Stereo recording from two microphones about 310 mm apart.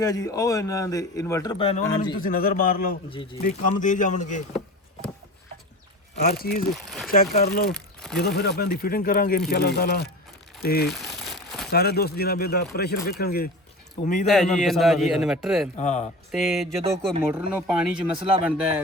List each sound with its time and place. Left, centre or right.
0.0 s a man's voice: centre; by 2.9 s left
3.1 s a man's voice: centre
6.1 s speech: left
6.7 s a man's voice: centre
7.1 s speech: left
7.7 s speech: centre
8.2 s speech: left
10.8 s crumpling: centre
11.7 s speech: left
14.3 s a man's voice: centre
15.7 s speech: left
16.3 s a man's voice: centre